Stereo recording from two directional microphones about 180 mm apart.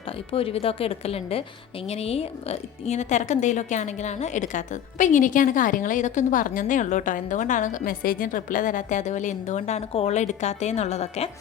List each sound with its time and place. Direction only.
0.3 s a woman's voice: 30° left (ahead or behind)